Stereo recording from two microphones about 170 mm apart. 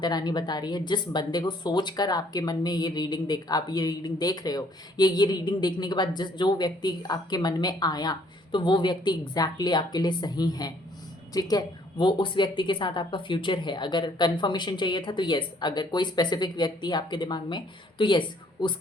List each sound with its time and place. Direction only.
0.0 s speech: 25° left (ahead or behind)